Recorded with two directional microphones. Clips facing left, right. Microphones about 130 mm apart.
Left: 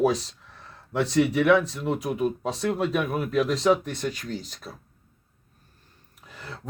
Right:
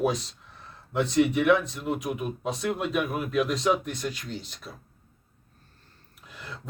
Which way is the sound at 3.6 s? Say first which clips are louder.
Left 3 dB; 15° right (ahead or behind).